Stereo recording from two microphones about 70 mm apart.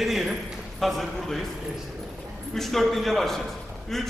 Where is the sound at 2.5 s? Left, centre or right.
Centre.